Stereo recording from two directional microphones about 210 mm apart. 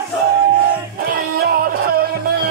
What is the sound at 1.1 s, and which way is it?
Music, 45° right (ahead or behind).